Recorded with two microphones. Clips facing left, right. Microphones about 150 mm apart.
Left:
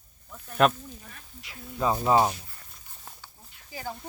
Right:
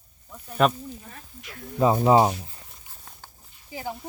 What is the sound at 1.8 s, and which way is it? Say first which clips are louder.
Speech: right 5 dB; 20° right (ahead or behind).